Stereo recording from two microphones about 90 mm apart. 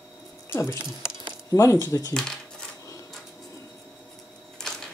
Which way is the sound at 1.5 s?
35° left (ahead or behind).